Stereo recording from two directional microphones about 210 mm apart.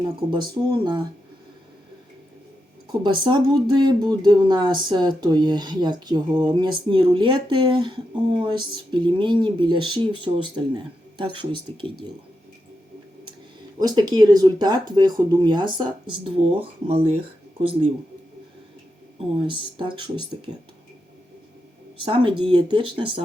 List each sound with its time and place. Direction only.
0.7 s speech: 20° right (ahead or behind)
3.0 s speech: 20° right (ahead or behind)
13.7 s speech: 20° right (ahead or behind)
19.8 s speech: 25° right (ahead or behind)
22.0 s speech: 25° right (ahead or behind)